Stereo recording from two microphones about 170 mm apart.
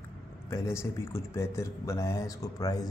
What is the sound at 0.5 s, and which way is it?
Speech, 15° left (ahead or behind).